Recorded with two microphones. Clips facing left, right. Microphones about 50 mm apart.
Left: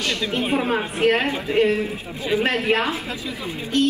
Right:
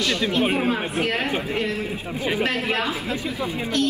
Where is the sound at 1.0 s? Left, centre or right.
Left.